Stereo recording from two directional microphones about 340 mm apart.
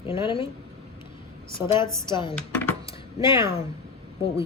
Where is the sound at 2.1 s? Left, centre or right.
Centre.